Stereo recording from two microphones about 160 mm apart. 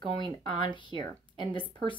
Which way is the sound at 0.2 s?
30° left (ahead or behind).